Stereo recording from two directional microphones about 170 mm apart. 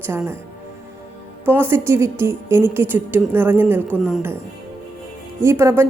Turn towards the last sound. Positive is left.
turn(degrees=-15)  # may be behind; listen again after turning